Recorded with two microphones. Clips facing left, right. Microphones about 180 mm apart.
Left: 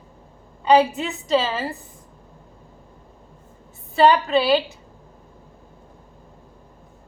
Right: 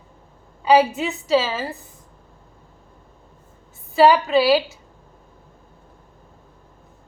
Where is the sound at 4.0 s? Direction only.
5° right (ahead or behind).